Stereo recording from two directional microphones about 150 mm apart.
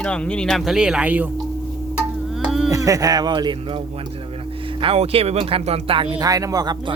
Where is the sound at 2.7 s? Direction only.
25° right (ahead or behind).